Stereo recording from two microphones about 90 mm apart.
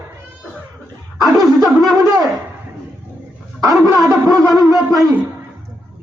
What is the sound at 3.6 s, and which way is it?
Speech, 40° right (ahead or behind).